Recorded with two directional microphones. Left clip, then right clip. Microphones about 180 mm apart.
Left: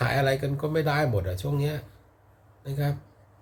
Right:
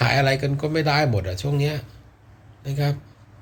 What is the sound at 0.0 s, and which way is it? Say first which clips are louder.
Speech: right 5 dB; 15° left (ahead or behind).